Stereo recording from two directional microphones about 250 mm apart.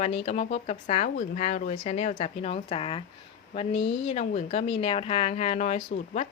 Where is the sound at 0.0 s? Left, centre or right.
Left.